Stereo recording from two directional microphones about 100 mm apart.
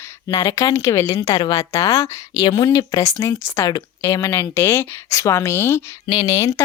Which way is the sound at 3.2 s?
25° left (ahead or behind).